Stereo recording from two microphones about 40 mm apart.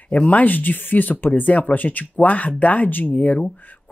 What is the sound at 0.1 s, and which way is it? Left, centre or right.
Speech, left.